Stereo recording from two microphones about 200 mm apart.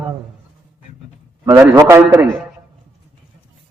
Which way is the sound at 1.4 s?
15° right (ahead or behind).